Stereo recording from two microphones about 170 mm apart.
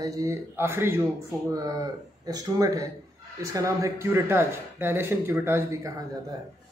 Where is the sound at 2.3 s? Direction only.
20° right (ahead or behind).